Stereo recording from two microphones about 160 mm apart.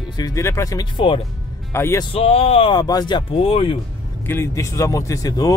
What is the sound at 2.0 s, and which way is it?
Speech, 35° left (ahead or behind).